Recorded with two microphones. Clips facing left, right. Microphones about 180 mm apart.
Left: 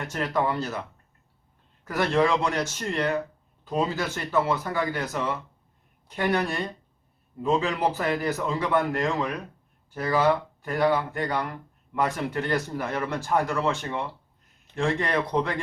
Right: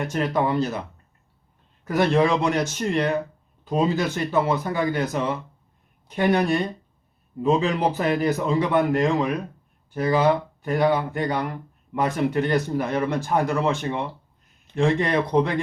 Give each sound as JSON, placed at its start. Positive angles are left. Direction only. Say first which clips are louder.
{"t": 0.0, "sound": "speech", "louder": "right 4 dB", "side_deg": -20}